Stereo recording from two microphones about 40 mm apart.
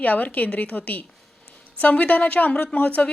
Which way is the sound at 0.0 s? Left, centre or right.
Left.